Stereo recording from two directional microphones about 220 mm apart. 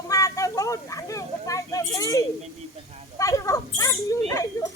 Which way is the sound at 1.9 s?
15° left (ahead or behind).